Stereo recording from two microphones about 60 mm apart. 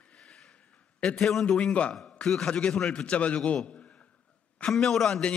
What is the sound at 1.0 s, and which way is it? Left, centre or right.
Speech, centre.